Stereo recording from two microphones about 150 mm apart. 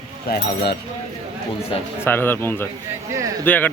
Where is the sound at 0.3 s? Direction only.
90° left.